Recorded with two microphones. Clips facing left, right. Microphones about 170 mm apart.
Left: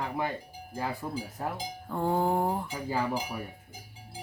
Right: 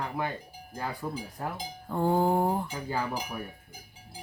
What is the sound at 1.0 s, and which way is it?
Cowbell, 10° left (ahead or behind).